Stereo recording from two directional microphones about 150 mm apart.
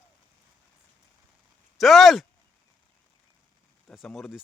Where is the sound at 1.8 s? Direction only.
Centre (ahead or behind).